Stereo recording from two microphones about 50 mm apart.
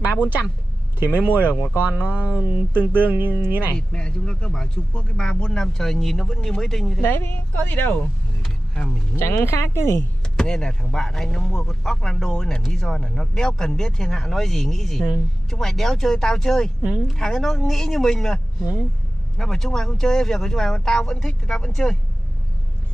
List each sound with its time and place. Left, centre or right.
0.0 s speech: right
0.9 s music: right
1.3 s speech: left
2.9 s music: right
3.7 s speech: centre
7.5 s speech: left
8.7 s speech: centre
9.1 s speech: left
10.3 s speech: centre